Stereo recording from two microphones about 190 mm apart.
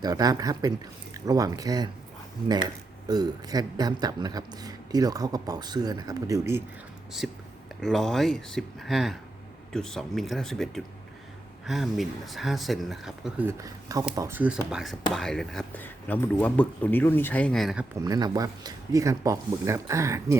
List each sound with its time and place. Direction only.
0.0 s speech: 20° right (ahead or behind)
3.1 s speech: 20° right (ahead or behind)
7.2 s speech: 5° right (ahead or behind)
13.5 s speech: 15° right (ahead or behind); by 17.8 s centre (ahead or behind)
18.0 s speech: 20° right (ahead or behind)